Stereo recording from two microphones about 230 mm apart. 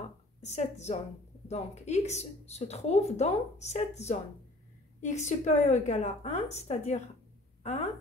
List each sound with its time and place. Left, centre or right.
0.4 s a woman's voice: left